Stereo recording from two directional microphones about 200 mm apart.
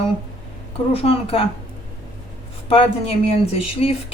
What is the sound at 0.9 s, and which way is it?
Speech, 30° left (ahead or behind).